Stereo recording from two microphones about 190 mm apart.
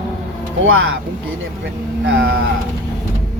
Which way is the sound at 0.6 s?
90° right.